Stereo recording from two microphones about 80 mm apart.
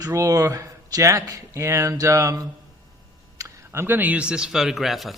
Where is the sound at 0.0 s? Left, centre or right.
Right.